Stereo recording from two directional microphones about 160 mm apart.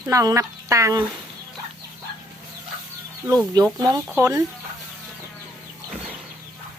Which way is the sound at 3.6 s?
25° right (ahead or behind).